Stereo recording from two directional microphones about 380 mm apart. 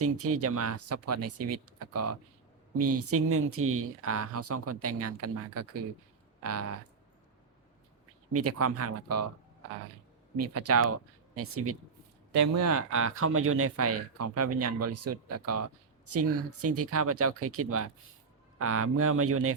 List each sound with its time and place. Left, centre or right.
0.0 s speech: right
8.3 s speech: right
10.3 s speech: right